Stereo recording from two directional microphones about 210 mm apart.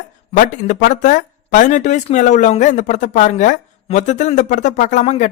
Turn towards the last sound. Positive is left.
turn(degrees=35)  # may be behind; listen again after turning